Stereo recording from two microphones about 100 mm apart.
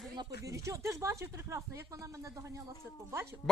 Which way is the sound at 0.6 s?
30° right (ahead or behind).